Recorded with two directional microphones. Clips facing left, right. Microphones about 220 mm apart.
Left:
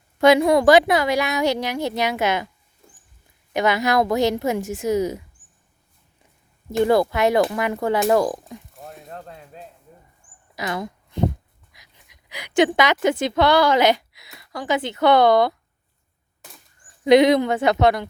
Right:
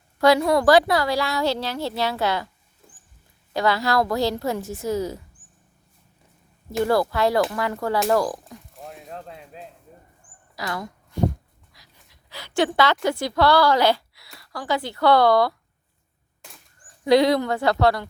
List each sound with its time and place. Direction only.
0.2 s a woman's voice: 20° left (ahead or behind)
3.5 s a woman's voice: 20° left (ahead or behind)
6.8 s a woman's voice: 20° left (ahead or behind)
8.7 s a sound: centre (ahead or behind)
10.5 s a woman's voice: 20° left (ahead or behind)
17.0 s a woman's voice: 20° left (ahead or behind)